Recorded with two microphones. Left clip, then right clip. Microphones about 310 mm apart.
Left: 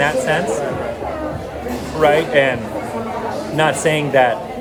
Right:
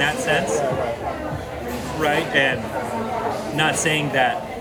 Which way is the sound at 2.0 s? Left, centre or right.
Centre.